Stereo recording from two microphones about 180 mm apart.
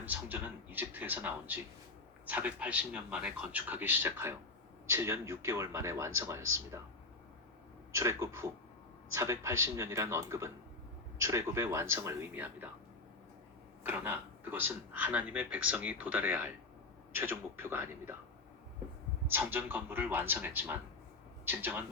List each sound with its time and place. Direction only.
0.0 s a man's voice: 10° right (ahead or behind)
7.9 s a man's voice: 15° right (ahead or behind)
13.8 s a man's voice: 10° right (ahead or behind)
19.3 s a man's voice: 10° right (ahead or behind)